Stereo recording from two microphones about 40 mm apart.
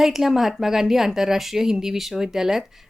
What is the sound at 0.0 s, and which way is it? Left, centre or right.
A woman's voice, centre.